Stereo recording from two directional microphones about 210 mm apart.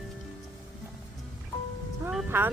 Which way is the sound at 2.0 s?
10° right (ahead or behind).